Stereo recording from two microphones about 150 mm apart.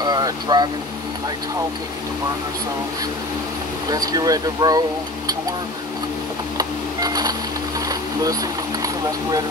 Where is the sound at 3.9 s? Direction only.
25° right (ahead or behind).